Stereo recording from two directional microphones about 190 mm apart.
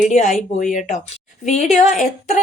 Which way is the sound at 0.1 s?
40° left (ahead or behind).